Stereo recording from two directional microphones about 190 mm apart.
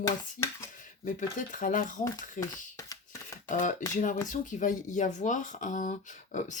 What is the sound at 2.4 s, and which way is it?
Shuffling cards, 15° left (ahead or behind).